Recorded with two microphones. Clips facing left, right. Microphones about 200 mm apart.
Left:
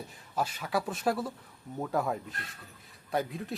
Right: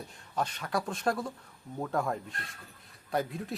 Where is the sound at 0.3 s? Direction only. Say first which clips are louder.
Left 1 dB; 5° left (ahead or behind).